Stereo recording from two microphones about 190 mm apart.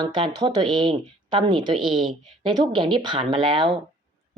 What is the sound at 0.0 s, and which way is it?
Speech, 25° right (ahead or behind).